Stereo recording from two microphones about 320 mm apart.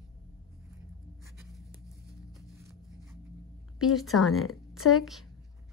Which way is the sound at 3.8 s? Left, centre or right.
Centre.